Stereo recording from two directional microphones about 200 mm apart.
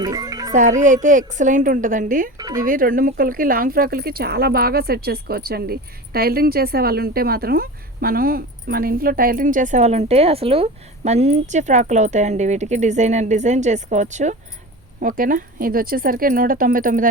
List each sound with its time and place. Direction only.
0.0 s music: 20° right (ahead or behind)
0.5 s speech: 40° right (ahead or behind)
2.4 s speech: 20° right (ahead or behind)
2.6 s speech: 45° right (ahead or behind)